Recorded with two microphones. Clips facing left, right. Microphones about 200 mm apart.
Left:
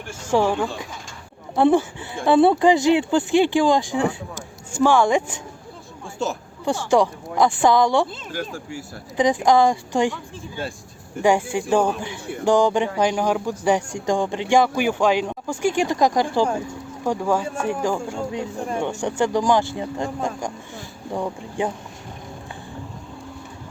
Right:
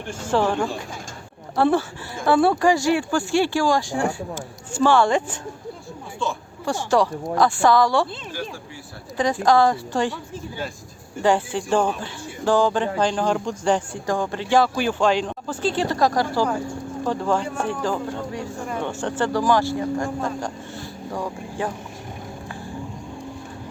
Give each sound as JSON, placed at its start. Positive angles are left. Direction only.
{"t": 0.3, "sound": "speech", "side_deg": 10}
{"t": 6.9, "sound": "speech", "side_deg": 15}
{"t": 11.2, "sound": "speech", "side_deg": 10}